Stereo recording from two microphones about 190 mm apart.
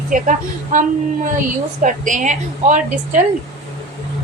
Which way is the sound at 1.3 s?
45° right (ahead or behind).